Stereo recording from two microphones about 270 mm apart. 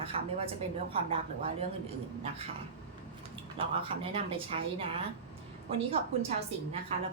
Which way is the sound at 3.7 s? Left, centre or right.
Centre.